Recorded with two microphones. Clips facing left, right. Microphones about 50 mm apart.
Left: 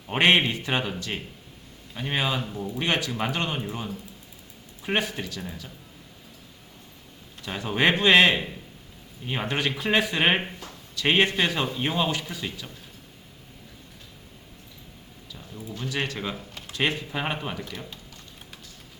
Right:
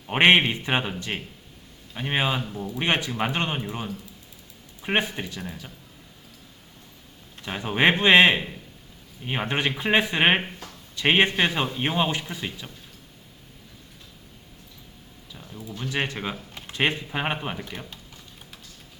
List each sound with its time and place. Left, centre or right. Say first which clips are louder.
0.1 s a man's voice: right 2 dB; right
2.5 s speech: even; centre
2.7 s a man's voice: right 2 dB; right
7.4 s a man's voice: right 2 dB; centre
15.7 s a man's voice: right 2 dB; right